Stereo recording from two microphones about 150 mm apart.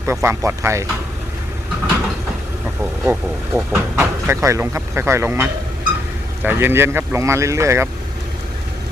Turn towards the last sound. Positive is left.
turn(degrees=-20)  # may be behind; listen again after turning